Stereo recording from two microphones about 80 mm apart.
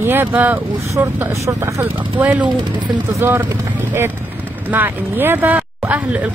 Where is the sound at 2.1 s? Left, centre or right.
Centre.